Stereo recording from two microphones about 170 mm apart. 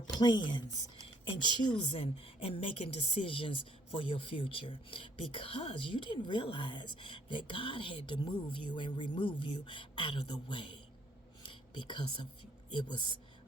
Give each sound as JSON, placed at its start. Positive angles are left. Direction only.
{"t": 0.2, "sound": "a woman's voice", "side_deg": 25}